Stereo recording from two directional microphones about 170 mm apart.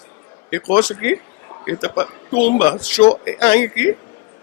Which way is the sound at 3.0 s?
25° left (ahead or behind).